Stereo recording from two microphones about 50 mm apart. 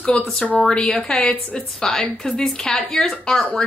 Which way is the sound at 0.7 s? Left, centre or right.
Centre.